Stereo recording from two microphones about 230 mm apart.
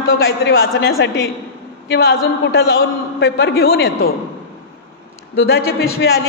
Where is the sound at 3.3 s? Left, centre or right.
Left.